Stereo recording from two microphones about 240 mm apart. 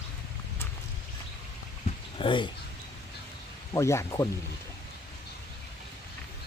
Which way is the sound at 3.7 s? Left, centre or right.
Centre.